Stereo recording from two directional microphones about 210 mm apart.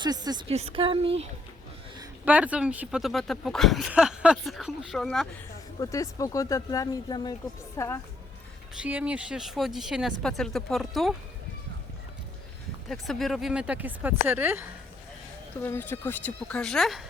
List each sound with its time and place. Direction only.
0.0 s speech: 20° right (ahead or behind)
2.2 s speech: 5° right (ahead or behind)
5.8 s speech: 15° left (ahead or behind)
8.7 s speech: 5° right (ahead or behind)
12.9 s speech: centre (ahead or behind)
15.6 s speech: 10° left (ahead or behind)